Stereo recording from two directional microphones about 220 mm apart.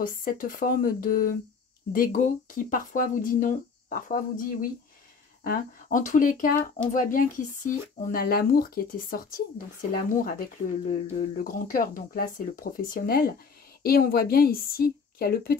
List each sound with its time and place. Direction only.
0.0 s a woman's voice: 40° left (ahead or behind)